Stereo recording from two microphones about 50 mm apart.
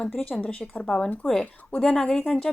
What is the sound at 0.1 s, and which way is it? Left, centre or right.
Speech, left.